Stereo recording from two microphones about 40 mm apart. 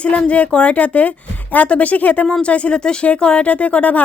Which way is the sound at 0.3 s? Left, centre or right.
Left.